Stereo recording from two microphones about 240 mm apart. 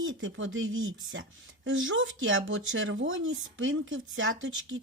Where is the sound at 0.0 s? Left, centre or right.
Right.